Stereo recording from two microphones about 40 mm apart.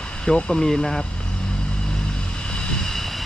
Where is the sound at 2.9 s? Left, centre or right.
Centre.